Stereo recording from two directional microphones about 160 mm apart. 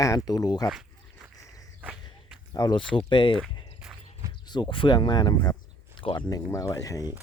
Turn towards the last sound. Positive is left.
turn(degrees=20)  # may be behind; listen again after turning